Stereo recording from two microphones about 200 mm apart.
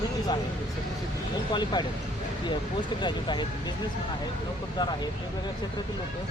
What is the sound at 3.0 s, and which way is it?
Speech, 25° left (ahead or behind).